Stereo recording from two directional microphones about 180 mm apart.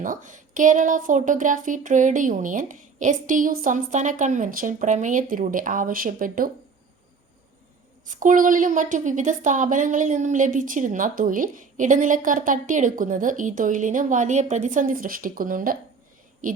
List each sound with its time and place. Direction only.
0.0 s speech: 45° right (ahead or behind)
8.1 s speech: 45° right (ahead or behind)